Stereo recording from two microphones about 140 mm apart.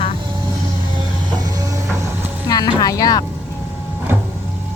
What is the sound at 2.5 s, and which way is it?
Speech, 30° left (ahead or behind).